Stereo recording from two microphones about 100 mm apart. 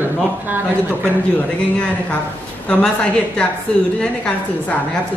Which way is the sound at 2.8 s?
10° left (ahead or behind).